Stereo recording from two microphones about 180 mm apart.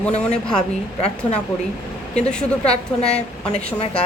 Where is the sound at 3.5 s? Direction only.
35° left (ahead or behind).